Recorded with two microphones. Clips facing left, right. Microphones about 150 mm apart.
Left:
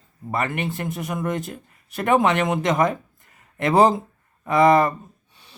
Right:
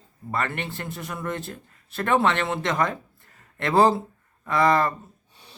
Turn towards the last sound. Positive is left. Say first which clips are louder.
# left 5 dB
turn(degrees=20)  # may be behind; listen again after turning